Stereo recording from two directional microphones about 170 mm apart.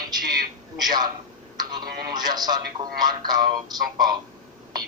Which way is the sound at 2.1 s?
25° right (ahead or behind).